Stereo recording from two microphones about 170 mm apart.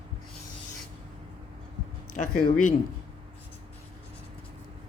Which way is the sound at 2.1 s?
50° left (ahead or behind).